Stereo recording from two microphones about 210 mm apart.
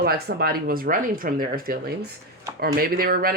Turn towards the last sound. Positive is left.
turn(degrees=-45)  # may be behind; listen again after turning